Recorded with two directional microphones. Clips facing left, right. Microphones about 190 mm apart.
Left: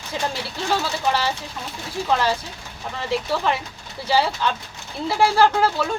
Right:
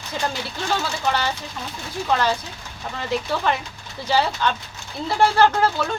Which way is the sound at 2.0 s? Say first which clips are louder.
Even; 5° left (ahead or behind).